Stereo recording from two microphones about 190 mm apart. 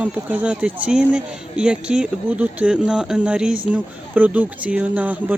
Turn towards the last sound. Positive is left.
turn(degrees=-10)  # may be behind; listen again after turning